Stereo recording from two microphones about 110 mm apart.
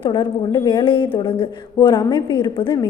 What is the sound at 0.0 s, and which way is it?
A woman's voice, 40° left (ahead or behind).